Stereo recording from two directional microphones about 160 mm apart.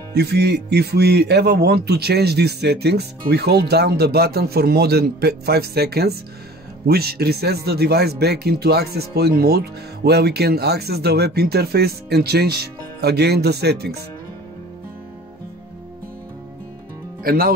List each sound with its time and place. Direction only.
0.1 s speech: 90° right
17.2 s speech: 70° right (ahead or behind)